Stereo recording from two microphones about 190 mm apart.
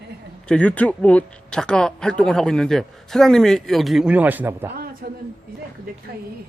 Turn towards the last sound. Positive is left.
turn(degrees=-50)  # may be behind; listen again after turning